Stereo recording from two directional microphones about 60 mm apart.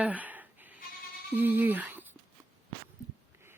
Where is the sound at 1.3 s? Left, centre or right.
Right.